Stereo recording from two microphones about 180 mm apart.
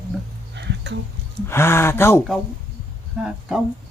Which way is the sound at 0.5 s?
70° right (ahead or behind).